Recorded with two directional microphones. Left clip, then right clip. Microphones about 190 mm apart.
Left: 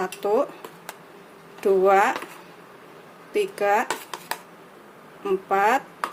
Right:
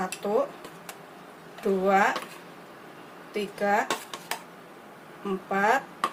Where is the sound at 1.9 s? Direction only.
50° left (ahead or behind).